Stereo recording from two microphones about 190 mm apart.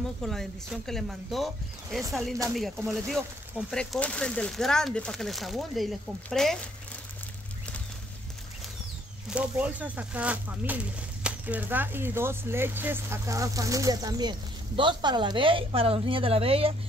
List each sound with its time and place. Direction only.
0.2 s speech: centre (ahead or behind)
9.3 s a woman's voice: 5° right (ahead or behind); by 16.7 s 30° right (ahead or behind)